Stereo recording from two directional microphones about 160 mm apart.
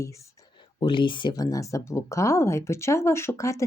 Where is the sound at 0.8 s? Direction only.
30° left (ahead or behind).